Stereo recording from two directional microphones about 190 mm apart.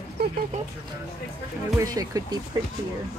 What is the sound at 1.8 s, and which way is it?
Speech, 20° right (ahead or behind).